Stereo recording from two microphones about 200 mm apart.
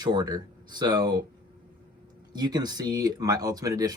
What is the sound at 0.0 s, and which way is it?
Speech, 20° right (ahead or behind).